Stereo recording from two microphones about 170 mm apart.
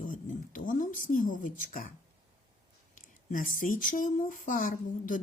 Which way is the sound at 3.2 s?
50° left (ahead or behind).